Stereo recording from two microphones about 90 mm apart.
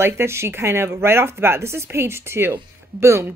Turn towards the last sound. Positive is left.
turn(degrees=-30)  # may be behind; listen again after turning